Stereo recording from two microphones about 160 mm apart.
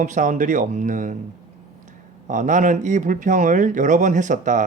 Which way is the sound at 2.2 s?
50° right (ahead or behind).